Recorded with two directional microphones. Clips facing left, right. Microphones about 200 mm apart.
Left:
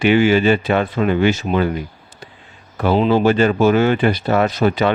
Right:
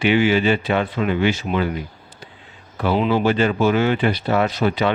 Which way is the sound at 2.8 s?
40° left (ahead or behind).